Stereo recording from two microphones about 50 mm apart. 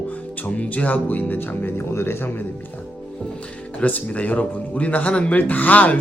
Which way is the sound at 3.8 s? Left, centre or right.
Left.